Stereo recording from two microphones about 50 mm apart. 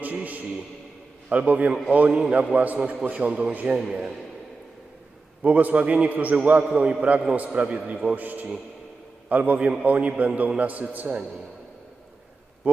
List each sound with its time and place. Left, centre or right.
0.0 s a man's voice: right; by 4.1 s centre
5.4 s a man's voice: right
6.7 s a man's voice: centre
7.3 s a man's voice: right